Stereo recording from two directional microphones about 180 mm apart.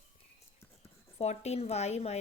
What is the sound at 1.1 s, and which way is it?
A woman's voice, 40° left (ahead or behind).